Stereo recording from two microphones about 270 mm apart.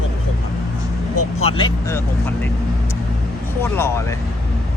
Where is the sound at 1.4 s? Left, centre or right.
Centre.